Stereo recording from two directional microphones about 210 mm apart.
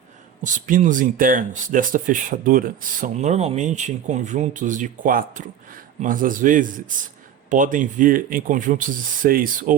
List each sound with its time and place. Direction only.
0.4 s speech: 35° right (ahead or behind)